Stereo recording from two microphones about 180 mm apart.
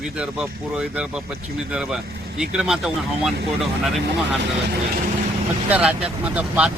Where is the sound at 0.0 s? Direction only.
5° right (ahead or behind).